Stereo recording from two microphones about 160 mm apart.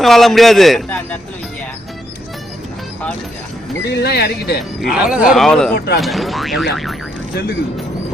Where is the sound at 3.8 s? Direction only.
90° left.